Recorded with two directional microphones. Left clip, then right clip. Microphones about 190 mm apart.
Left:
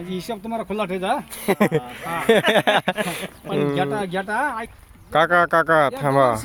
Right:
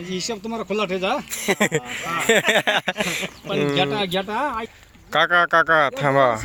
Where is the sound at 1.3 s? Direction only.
15° left (ahead or behind); by 4.7 s 10° right (ahead or behind).